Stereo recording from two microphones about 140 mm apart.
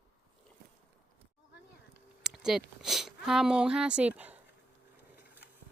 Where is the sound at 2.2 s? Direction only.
5° right (ahead or behind).